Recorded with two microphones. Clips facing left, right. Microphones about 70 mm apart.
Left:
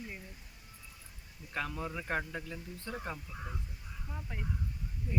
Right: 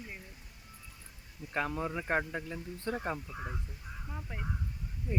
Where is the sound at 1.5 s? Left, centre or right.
Right.